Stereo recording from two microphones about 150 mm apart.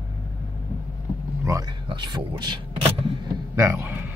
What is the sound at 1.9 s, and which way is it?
Speech, 30° right (ahead or behind).